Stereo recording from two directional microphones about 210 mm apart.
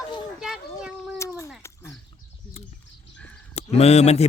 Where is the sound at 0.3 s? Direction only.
5° right (ahead or behind).